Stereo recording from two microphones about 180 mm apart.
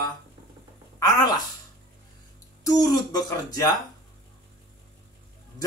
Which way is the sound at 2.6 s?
20° left (ahead or behind).